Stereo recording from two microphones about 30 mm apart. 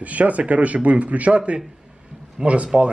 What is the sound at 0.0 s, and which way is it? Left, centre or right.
Speech, right.